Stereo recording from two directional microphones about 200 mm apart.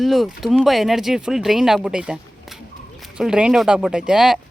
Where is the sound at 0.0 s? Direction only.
Centre (ahead or behind).